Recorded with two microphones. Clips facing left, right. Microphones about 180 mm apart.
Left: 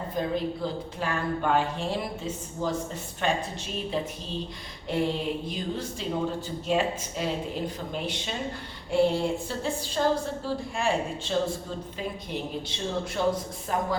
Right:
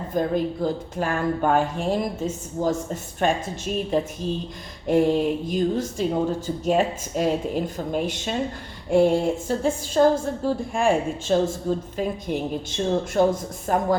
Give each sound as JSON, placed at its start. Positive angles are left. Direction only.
{"t": 0.1, "sound": "a woman's voice", "side_deg": -45}